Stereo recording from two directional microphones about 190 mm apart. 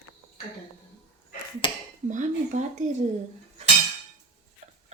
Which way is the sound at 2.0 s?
40° right (ahead or behind).